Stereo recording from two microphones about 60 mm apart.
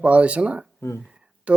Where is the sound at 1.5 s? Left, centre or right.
Centre.